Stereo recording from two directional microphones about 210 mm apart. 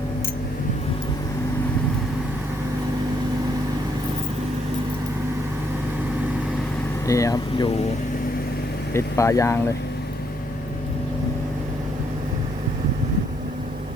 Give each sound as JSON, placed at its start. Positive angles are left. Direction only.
{"t": 7.1, "sound": "speech", "side_deg": 15}
{"t": 8.9, "sound": "speech", "side_deg": 15}